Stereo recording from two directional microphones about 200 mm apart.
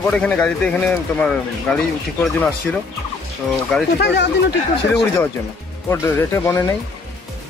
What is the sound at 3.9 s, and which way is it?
Speech, 60° left (ahead or behind).